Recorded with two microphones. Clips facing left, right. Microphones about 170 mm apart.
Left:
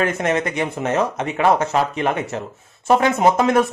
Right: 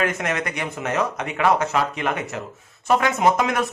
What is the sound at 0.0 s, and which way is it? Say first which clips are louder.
Speech: left 4 dB; 30° left (ahead or behind).